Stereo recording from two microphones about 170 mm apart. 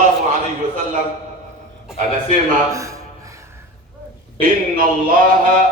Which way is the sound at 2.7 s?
20° right (ahead or behind).